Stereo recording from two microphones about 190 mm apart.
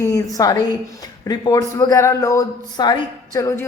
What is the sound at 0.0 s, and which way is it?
A woman's voice, 20° left (ahead or behind).